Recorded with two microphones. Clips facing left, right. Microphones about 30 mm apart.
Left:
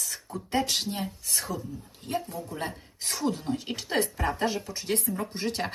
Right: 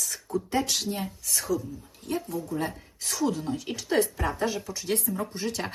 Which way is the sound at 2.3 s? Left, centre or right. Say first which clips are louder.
Right 4 dB; left.